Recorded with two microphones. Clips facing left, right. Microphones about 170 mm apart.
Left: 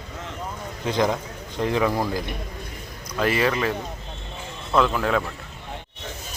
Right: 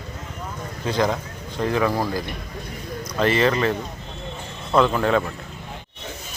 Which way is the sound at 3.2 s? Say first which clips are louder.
Right 3 dB; 5° left (ahead or behind).